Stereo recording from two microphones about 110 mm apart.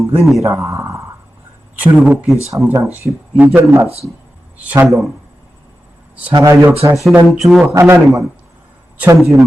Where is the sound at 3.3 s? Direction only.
15° right (ahead or behind).